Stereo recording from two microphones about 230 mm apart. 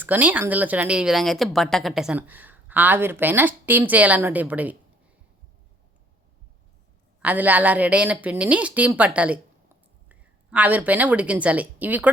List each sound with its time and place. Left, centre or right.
0.0 s speech: centre
7.2 s a woman's voice: centre